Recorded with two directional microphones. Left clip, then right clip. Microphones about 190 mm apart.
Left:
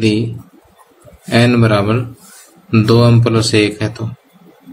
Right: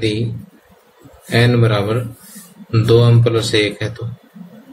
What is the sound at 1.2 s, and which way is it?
Speech, 45° left (ahead or behind).